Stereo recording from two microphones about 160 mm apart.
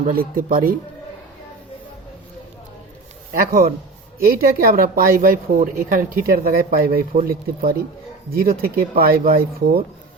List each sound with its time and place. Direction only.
0.0 s speech: 65° right (ahead or behind)
3.3 s speech: 65° right (ahead or behind)